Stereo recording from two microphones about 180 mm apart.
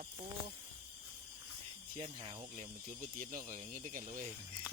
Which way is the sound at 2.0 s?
35° right (ahead or behind).